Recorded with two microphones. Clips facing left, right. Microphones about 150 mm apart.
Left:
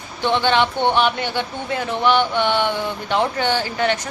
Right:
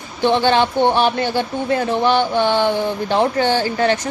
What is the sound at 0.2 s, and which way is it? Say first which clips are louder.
Speech: right 3 dB; 35° right (ahead or behind).